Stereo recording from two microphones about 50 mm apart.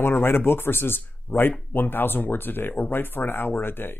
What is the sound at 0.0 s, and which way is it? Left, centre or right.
Speech, left.